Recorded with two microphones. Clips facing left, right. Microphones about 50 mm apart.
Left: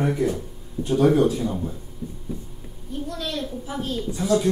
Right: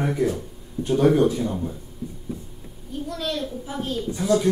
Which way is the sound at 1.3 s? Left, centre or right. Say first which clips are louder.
Even; centre.